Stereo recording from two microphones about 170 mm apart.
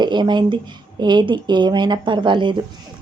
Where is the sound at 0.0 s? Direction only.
25° right (ahead or behind).